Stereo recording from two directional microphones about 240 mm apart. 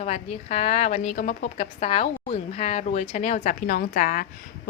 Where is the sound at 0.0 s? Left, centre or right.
Left.